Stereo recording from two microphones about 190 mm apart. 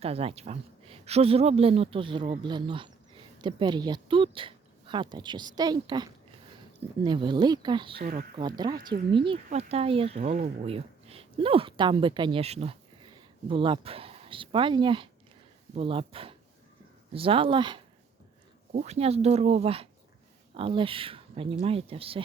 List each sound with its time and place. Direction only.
0.0 s speech: 30° right (ahead or behind)
18.7 s speech: 40° right (ahead or behind)